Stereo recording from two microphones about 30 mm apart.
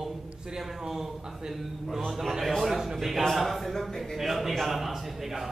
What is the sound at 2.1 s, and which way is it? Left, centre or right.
Speech, centre.